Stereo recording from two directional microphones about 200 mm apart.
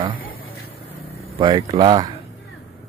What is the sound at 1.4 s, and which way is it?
Speech, 20° right (ahead or behind).